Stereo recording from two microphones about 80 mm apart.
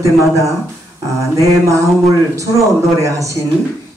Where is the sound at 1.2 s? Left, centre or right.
Right.